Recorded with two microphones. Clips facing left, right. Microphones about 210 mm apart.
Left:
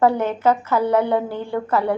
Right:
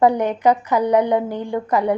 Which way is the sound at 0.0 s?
15° right (ahead or behind).